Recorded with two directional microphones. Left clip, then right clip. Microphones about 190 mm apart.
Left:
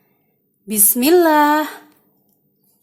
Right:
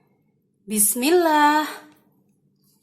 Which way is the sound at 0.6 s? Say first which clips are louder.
Left 5 dB; 30° left (ahead or behind).